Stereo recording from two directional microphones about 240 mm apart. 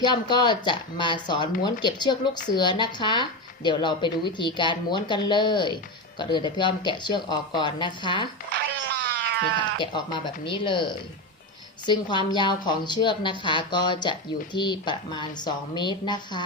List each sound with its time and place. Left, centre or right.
0.0 s speech: centre
9.4 s speech: centre